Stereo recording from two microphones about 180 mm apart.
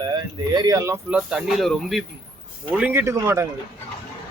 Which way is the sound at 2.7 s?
10° right (ahead or behind).